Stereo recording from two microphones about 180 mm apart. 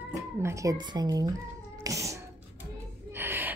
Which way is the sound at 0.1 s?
15° right (ahead or behind).